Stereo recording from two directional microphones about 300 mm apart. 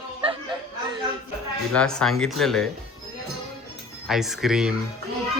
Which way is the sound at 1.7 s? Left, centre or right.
Centre.